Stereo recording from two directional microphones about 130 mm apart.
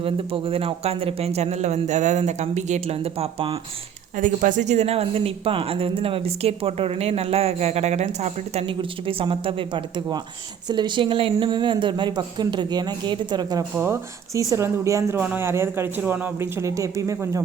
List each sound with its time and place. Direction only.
0.0 s speech: 45° right (ahead or behind)
4.2 s speech: 80° right; by 8.6 s 60° right (ahead or behind)
8.6 s speech: 45° right (ahead or behind)
13.7 s speech: 20° right (ahead or behind)